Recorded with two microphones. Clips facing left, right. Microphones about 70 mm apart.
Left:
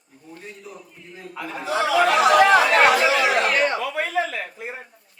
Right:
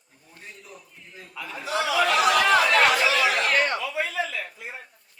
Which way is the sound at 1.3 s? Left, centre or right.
Left.